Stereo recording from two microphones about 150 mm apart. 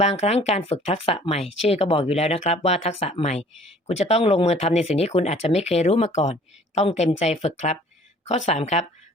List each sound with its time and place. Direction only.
0.0 s speech: 45° left (ahead or behind)